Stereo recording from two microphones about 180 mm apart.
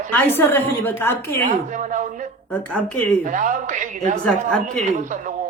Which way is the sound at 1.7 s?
45° right (ahead or behind).